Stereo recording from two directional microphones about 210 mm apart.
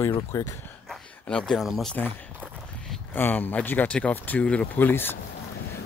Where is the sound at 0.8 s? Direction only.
Centre (ahead or behind).